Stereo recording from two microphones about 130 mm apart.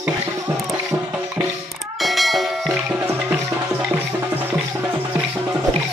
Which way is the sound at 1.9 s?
Centre (ahead or behind).